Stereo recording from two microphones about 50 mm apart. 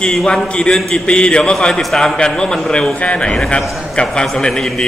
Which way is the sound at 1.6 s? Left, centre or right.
Centre.